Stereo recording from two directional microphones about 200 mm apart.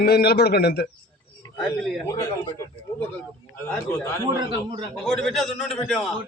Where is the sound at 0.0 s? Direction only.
50° left (ahead or behind).